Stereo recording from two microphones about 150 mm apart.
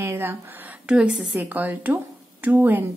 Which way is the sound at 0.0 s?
15° right (ahead or behind).